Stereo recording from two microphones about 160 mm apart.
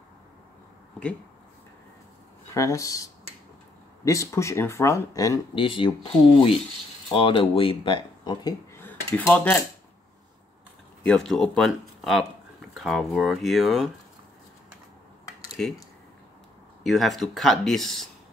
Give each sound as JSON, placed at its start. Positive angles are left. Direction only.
{"t": 2.5, "sound": "speech", "side_deg": 20}
{"t": 8.7, "sound": "cutlery", "side_deg": 15}
{"t": 11.1, "sound": "speech", "side_deg": 0}
{"t": 15.6, "sound": "speech", "side_deg": 5}
{"t": 16.8, "sound": "speech", "side_deg": 0}